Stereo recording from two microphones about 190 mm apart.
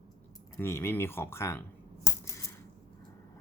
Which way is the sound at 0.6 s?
10° left (ahead or behind).